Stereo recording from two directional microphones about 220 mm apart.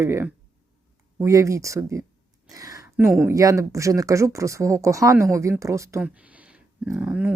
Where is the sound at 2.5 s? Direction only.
15° right (ahead or behind).